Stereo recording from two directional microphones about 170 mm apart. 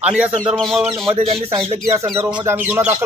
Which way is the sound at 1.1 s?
35° right (ahead or behind).